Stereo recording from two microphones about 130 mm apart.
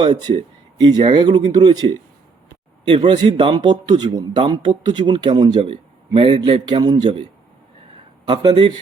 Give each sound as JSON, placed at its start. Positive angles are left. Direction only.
{"t": 0.0, "sound": "speech", "side_deg": -40}
{"t": 3.1, "sound": "speech", "side_deg": -35}
{"t": 8.3, "sound": "speech", "side_deg": -40}